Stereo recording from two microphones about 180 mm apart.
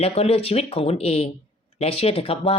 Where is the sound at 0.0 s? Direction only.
35° left (ahead or behind).